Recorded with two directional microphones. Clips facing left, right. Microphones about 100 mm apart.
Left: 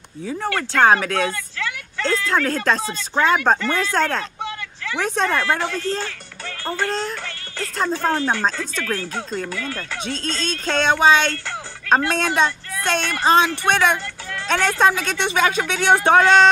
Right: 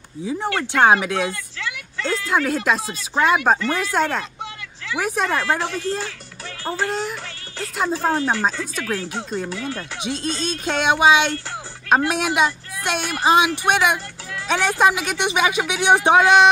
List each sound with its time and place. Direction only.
0.3 s a woman's voice: 15° right (ahead or behind)